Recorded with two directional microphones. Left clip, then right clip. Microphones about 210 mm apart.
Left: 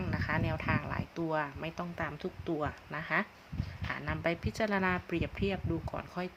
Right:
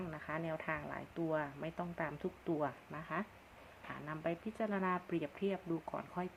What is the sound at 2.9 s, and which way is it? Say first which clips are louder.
Speech: left 9 dB; 20° left (ahead or behind).